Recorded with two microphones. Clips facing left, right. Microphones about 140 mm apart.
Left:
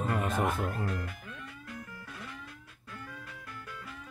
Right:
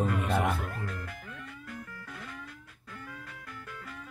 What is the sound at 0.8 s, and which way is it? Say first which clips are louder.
Speech: left 3 dB; 25° left (ahead or behind).